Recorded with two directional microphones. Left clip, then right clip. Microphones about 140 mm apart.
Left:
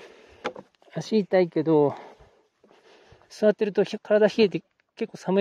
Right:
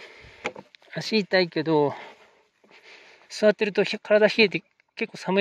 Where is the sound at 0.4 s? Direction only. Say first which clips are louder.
Even; 15° left (ahead or behind).